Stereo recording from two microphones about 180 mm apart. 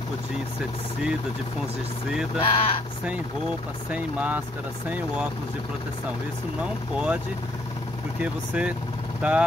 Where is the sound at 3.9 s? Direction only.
5° right (ahead or behind).